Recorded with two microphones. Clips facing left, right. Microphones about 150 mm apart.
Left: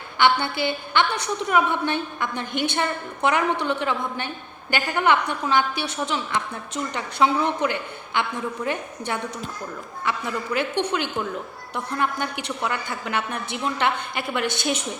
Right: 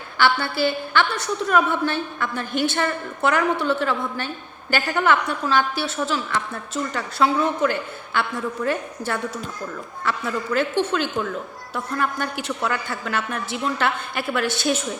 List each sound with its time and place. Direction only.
0.2 s a woman's voice: 20° left (ahead or behind)